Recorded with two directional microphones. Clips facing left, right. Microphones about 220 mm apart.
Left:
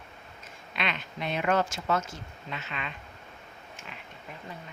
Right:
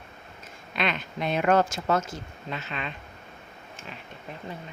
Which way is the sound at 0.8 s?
40° right (ahead or behind).